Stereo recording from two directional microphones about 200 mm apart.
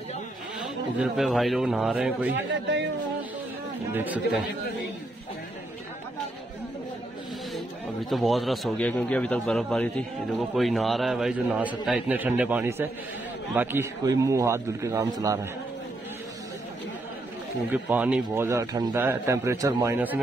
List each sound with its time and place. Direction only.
0.9 s a man's voice: centre (ahead or behind)
2.3 s speech: 65° right (ahead or behind)
3.9 s a man's voice: 10° right (ahead or behind)
7.5 s a man's voice: centre (ahead or behind); by 15.4 s 15° right (ahead or behind)
17.6 s a man's voice: 10° right (ahead or behind)